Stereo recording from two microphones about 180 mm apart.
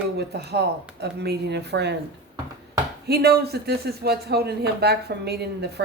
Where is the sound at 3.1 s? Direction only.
60° right (ahead or behind).